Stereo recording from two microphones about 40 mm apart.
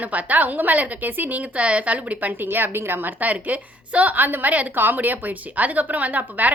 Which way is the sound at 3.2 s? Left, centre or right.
Right.